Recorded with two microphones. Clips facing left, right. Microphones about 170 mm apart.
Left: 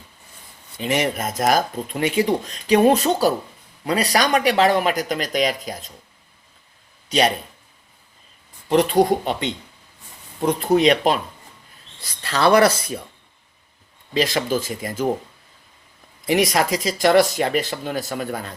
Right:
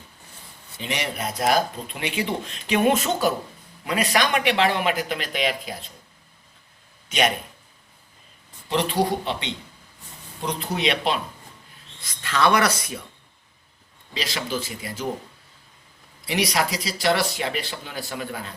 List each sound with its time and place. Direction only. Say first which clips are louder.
0.8 s speech: left 7 dB; 45° left (ahead or behind)
7.1 s speech: left 4 dB; 35° left (ahead or behind)
8.7 s speech: left 6 dB; 45° left (ahead or behind); by 12.9 s 30° left (ahead or behind)
14.1 s speech: left 8 dB; 50° left (ahead or behind)
16.2 s speech: left 5 dB; 50° left (ahead or behind)